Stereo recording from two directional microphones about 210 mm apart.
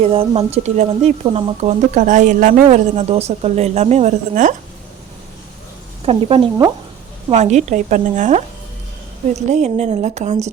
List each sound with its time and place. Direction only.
0.0 s speech: 30° right (ahead or behind)
6.1 s speech: 25° right (ahead or behind)
9.5 s speech: 30° right (ahead or behind)